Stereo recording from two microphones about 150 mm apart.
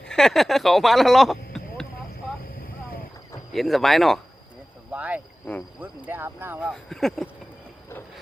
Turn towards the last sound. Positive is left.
turn(degrees=0)  # may be behind; listen again after turning